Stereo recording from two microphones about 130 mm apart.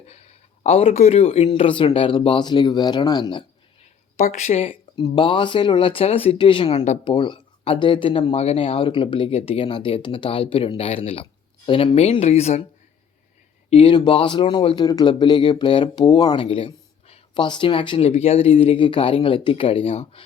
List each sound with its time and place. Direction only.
0.1 s speech: 55° left (ahead or behind); by 3.4 s 35° left (ahead or behind)
4.2 s speech: 60° left (ahead or behind)
4.9 s speech: 35° left (ahead or behind)
6.7 s speech: 60° left (ahead or behind)
7.0 s speech: 40° left (ahead or behind); by 12.6 s 55° left (ahead or behind)
13.7 s speech: 45° left (ahead or behind)